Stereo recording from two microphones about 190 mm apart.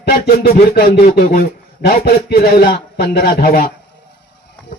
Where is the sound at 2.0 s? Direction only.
55° left (ahead or behind).